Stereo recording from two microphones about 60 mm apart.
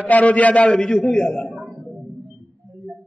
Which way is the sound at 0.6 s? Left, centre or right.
Centre.